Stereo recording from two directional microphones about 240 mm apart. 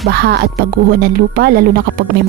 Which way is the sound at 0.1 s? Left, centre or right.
Right.